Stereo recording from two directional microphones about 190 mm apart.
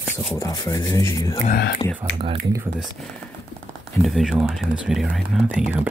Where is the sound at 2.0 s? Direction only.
35° right (ahead or behind).